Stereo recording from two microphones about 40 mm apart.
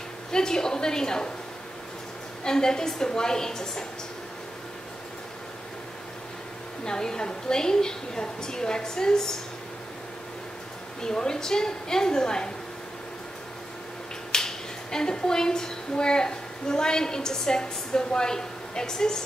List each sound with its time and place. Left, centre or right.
0.3 s a woman's voice: centre
2.4 s a woman's voice: centre
6.8 s a woman's voice: centre
11.0 s a woman's voice: centre
14.3 s speech: centre